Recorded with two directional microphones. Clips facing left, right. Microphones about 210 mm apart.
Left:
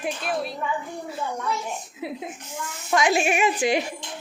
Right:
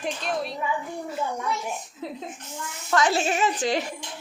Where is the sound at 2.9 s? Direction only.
10° left (ahead or behind).